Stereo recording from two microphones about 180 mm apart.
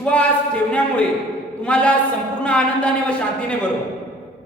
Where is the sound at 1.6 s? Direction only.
5° left (ahead or behind).